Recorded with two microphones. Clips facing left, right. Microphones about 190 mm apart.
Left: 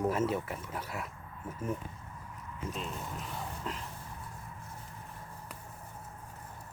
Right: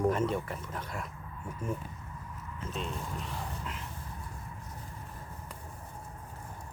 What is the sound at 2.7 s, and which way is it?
Speech, centre (ahead or behind).